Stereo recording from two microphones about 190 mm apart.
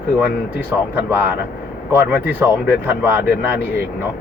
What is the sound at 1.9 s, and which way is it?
Speech, 10° right (ahead or behind).